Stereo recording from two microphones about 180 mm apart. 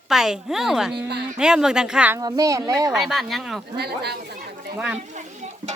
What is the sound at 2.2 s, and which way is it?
Speech, 20° right (ahead or behind).